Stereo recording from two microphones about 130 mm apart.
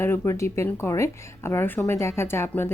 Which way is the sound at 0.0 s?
20° left (ahead or behind).